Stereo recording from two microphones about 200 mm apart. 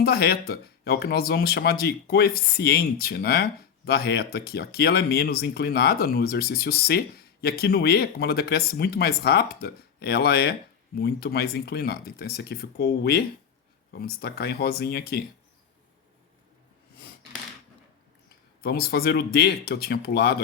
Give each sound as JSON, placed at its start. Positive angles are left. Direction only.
{"t": 0.0, "sound": "speech", "side_deg": 50}
{"t": 18.6, "sound": "speech", "side_deg": 50}